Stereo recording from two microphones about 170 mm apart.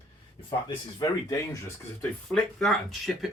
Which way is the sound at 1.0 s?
20° left (ahead or behind).